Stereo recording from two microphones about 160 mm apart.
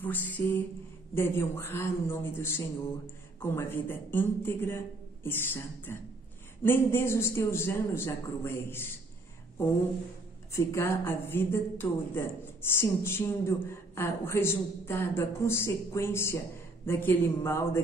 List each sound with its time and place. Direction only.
0.0 s a woman's voice: 10° left (ahead or behind)
10.5 s a woman's voice: 20° left (ahead or behind)